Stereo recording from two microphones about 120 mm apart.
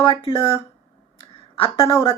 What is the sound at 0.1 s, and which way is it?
Speech, 45° left (ahead or behind).